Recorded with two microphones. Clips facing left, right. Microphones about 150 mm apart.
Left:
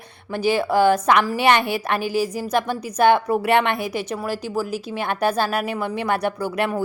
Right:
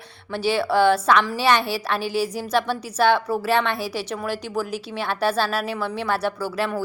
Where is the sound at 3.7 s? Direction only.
55° left (ahead or behind).